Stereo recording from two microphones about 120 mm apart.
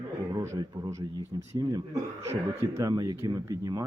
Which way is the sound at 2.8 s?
35° right (ahead or behind).